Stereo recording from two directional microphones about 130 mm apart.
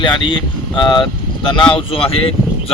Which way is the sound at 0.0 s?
40° left (ahead or behind).